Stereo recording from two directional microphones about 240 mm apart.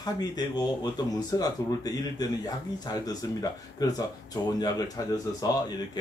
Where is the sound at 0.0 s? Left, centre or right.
Centre.